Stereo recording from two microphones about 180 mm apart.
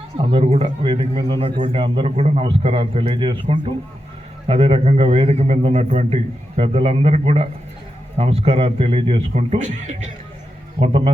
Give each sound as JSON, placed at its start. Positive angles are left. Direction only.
{"t": 0.2, "sound": "a man's voice", "side_deg": -30}
{"t": 4.4, "sound": "a man's voice", "side_deg": -30}